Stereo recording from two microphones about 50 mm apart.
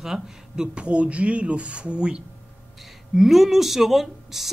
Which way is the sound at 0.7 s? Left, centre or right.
Right.